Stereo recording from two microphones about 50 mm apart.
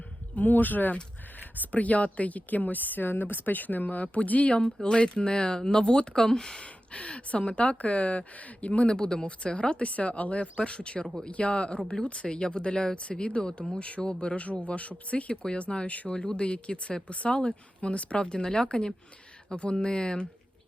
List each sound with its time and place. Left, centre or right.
0.3 s speech: left; by 20.2 s centre